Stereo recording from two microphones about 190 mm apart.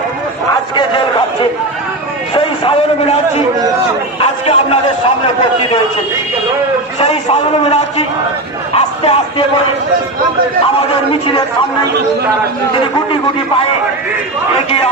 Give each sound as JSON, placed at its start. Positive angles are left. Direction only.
{"t": 2.3, "sound": "a sound", "side_deg": 30}
{"t": 5.2, "sound": "a man's voice", "side_deg": 30}
{"t": 7.0, "sound": "a man's voice", "side_deg": 30}
{"t": 11.1, "sound": "a man's voice", "side_deg": 30}